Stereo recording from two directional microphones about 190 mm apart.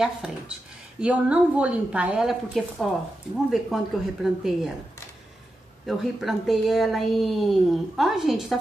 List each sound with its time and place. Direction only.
0.0 s a woman's voice: 5° right (ahead or behind)
5.9 s a woman's voice: centre (ahead or behind)